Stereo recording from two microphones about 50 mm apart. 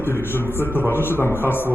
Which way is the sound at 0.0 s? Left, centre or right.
Left.